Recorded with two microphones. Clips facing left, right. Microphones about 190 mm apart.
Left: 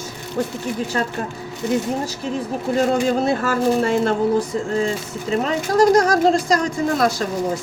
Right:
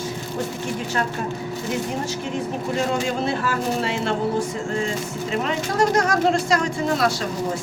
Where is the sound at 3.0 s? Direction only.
40° left (ahead or behind).